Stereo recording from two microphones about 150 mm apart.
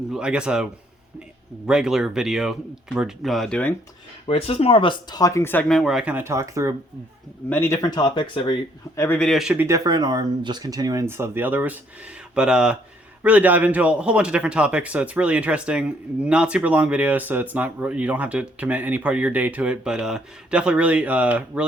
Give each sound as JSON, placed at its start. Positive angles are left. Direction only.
{"t": 0.1, "sound": "a man's voice", "side_deg": -5}
{"t": 4.3, "sound": "speech", "side_deg": 40}
{"t": 7.5, "sound": "speech", "side_deg": 20}
{"t": 9.0, "sound": "speech", "side_deg": 15}
{"t": 9.2, "sound": "speech", "side_deg": 0}
{"t": 9.6, "sound": "a man's voice", "side_deg": -25}